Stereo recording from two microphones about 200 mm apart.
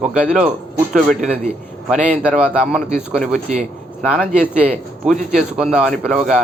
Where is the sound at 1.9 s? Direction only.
5° right (ahead or behind).